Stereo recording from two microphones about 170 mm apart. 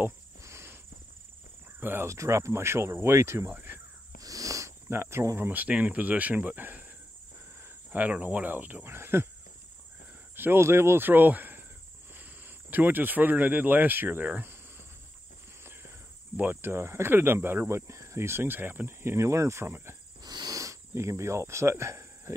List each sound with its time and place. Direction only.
0.0 s cricket: 15° right (ahead or behind)
1.8 s speech: 15° right (ahead or behind)
10.3 s speech: 15° right (ahead or behind)
16.3 s speech: 10° right (ahead or behind)
20.2 s cricket: 25° right (ahead or behind)